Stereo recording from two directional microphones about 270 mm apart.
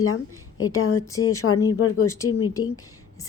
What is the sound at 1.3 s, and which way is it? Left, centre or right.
Speech, left.